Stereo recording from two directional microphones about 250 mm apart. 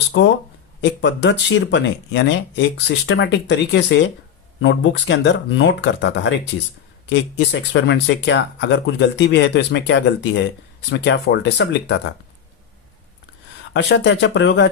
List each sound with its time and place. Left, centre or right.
0.1 s speech: left
13.7 s speech: left